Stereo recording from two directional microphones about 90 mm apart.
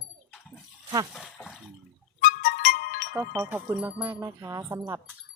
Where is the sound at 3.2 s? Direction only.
30° right (ahead or behind).